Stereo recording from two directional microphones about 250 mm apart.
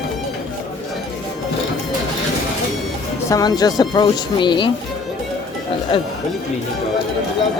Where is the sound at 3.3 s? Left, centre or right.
Centre.